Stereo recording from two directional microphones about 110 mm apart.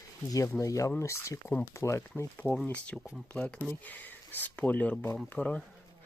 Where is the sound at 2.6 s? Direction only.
10° left (ahead or behind).